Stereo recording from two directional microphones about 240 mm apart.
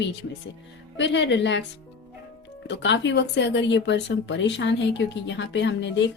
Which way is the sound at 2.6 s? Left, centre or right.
Left.